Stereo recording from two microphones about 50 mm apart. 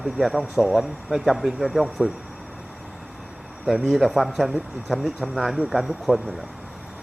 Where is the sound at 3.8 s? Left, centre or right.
Centre.